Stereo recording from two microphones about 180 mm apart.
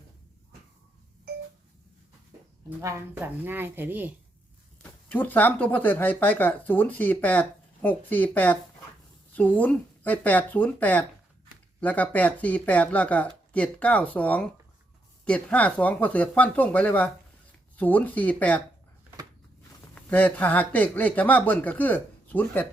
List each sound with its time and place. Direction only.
2.6 s speech: 15° right (ahead or behind)
4.8 s speech: 10° left (ahead or behind)
20.0 s speech: 10° left (ahead or behind)